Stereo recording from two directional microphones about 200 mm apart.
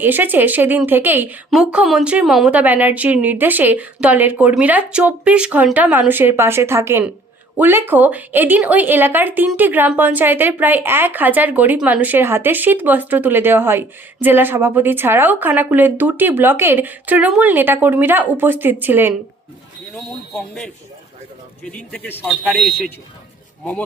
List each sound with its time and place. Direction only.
0.0 s a woman's voice: 10° right (ahead or behind)
21.9 s a man's voice: 10° left (ahead or behind)